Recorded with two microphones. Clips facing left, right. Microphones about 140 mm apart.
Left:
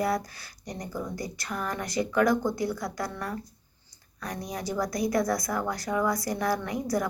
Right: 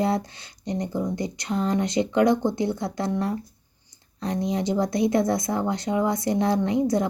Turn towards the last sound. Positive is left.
turn(degrees=-25)  # may be behind; listen again after turning